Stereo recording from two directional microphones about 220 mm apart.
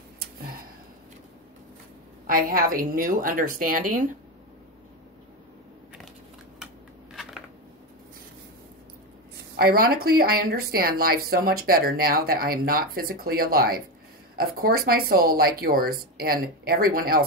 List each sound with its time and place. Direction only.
2.2 s a woman's voice: 40° right (ahead or behind)
9.6 s speech: 45° right (ahead or behind)